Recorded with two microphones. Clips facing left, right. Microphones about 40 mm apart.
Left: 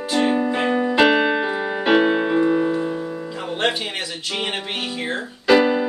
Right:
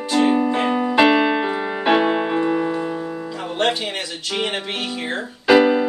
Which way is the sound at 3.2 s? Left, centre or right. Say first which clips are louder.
Right 2 dB; centre.